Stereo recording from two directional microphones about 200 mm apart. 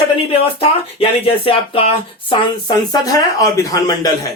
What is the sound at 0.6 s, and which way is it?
Speech, 30° left (ahead or behind).